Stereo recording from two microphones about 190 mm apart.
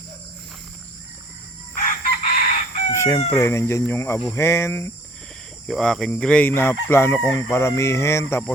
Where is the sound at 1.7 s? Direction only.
45° left (ahead or behind).